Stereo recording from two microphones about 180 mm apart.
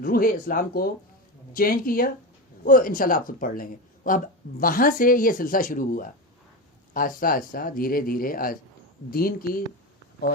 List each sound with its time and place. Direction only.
0.0 s speech: 55° left (ahead or behind)